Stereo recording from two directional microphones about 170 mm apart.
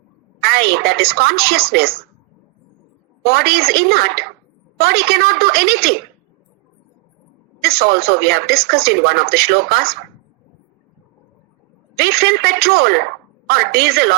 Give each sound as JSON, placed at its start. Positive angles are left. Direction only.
{"t": 0.4, "sound": "speech", "side_deg": -65}
{"t": 3.2, "sound": "speech", "side_deg": -65}
{"t": 7.6, "sound": "speech", "side_deg": -65}
{"t": 11.9, "sound": "a woman's voice", "side_deg": -65}